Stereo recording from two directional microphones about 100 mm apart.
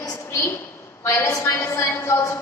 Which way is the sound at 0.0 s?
35° left (ahead or behind).